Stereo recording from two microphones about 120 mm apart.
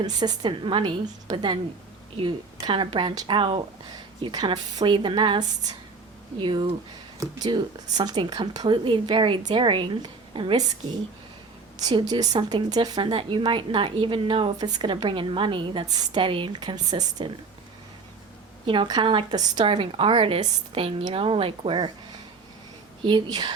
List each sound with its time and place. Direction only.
0.0 s a woman's voice: 35° right (ahead or behind)
11.8 s a woman's voice: 35° right (ahead or behind)
18.6 s a woman's voice: 45° right (ahead or behind)
23.0 s speech: 40° right (ahead or behind)